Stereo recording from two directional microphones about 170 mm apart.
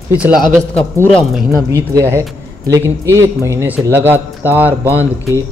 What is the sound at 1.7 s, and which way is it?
Speech, 20° right (ahead or behind).